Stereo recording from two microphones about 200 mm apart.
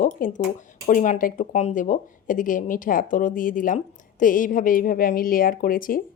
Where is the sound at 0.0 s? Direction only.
45° left (ahead or behind).